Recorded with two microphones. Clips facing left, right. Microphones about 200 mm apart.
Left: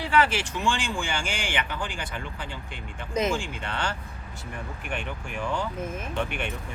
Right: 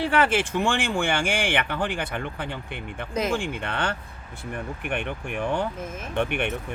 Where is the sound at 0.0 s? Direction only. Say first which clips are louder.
Right 2 dB; 50° right (ahead or behind).